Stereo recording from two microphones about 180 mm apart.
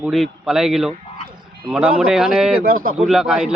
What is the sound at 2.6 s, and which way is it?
Speech, 50° right (ahead or behind).